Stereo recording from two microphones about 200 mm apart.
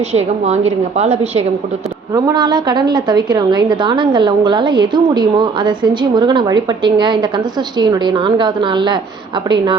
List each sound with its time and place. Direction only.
0.1 s a woman's voice: 35° right (ahead or behind)
2.1 s a woman's voice: 20° right (ahead or behind)